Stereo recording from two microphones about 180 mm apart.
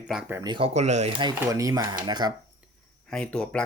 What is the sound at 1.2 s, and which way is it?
Speech, 20° right (ahead or behind).